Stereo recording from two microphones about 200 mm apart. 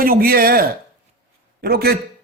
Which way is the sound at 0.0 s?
45° right (ahead or behind).